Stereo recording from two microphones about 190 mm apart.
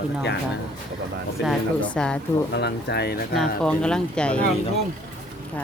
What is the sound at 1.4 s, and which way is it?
Speech, centre (ahead or behind).